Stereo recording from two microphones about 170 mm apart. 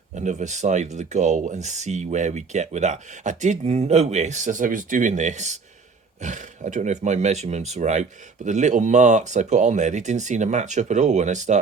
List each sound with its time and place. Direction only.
0.1 s speech: 45° right (ahead or behind)